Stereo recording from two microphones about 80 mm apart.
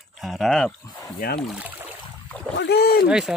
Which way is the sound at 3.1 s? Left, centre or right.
Centre.